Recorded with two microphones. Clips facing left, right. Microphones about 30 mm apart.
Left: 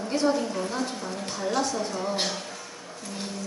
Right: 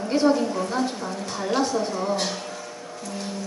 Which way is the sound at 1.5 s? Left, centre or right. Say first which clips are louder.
Right 3 dB; right.